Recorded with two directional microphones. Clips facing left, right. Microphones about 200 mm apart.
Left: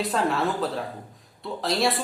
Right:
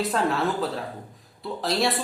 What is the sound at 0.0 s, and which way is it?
Speech, centre (ahead or behind).